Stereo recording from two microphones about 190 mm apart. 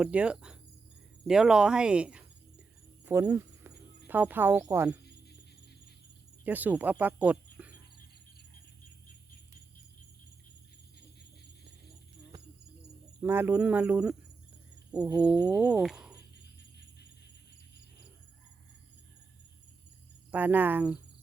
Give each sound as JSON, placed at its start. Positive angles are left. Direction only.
{"t": 0.0, "sound": "a sound", "side_deg": -5}
{"t": 3.1, "sound": "speech", "side_deg": -15}
{"t": 6.4, "sound": "speech", "side_deg": -10}
{"t": 7.6, "sound": "cricket", "side_deg": -5}
{"t": 13.2, "sound": "speech", "side_deg": -10}
{"t": 14.8, "sound": "a sound", "side_deg": -5}
{"t": 20.3, "sound": "speech", "side_deg": -10}